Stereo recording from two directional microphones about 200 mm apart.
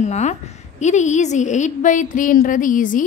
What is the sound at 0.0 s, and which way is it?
A woman's voice, 35° left (ahead or behind).